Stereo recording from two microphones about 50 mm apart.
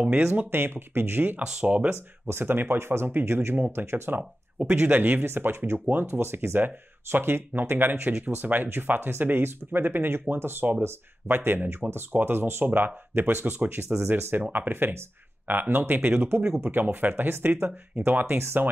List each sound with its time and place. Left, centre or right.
0.0 s speech: right
0.3 s speech: right
1.4 s speech: centre
1.7 s speech: right
2.4 s speech: right
4.8 s speech: right
5.2 s speech: right
10.8 s speech: right
13.8 s speech: right